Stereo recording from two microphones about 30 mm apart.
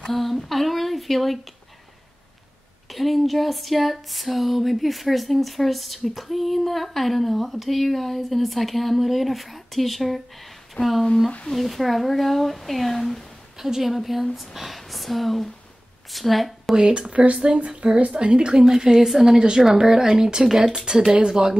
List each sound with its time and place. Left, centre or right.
0.1 s a sound: centre
0.5 s speech: centre
2.9 s a sound: centre
13.6 s a woman's voice: centre
13.9 s a sound: centre
16.1 s a woman's voice: centre
16.7 s speech: right
17.2 s speech: right
18.9 s speech: centre
20.1 s speech: right
20.4 s speech: centre
20.7 s speech: right